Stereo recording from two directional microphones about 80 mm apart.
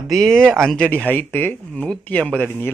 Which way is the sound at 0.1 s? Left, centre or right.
Centre.